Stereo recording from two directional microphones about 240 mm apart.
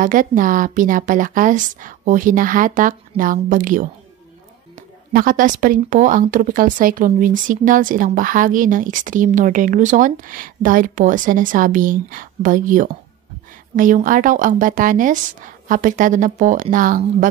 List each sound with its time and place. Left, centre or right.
0.0 s speech: right